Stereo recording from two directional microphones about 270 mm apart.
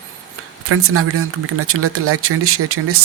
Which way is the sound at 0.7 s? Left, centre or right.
Right.